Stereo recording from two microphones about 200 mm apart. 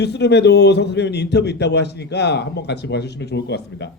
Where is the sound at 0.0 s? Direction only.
60° left (ahead or behind).